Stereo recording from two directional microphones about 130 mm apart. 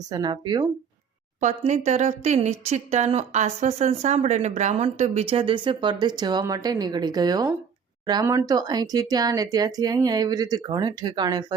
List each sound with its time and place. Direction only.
0.1 s speech: 35° right (ahead or behind)
1.4 s speech: 65° right (ahead or behind); by 11.5 s 30° right (ahead or behind)